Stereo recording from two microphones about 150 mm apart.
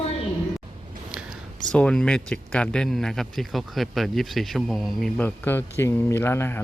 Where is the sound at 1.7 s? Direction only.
5° left (ahead or behind).